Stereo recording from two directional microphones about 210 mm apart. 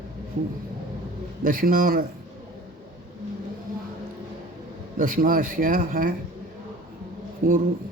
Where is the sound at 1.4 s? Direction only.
40° right (ahead or behind).